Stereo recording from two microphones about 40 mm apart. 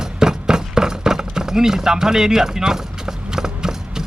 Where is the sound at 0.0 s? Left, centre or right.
Centre.